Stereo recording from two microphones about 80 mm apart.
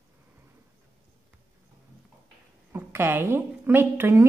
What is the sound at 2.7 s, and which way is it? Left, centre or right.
A woman's voice, right.